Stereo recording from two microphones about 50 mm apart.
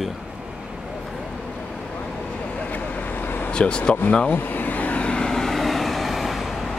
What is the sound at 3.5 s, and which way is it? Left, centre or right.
Speech, centre.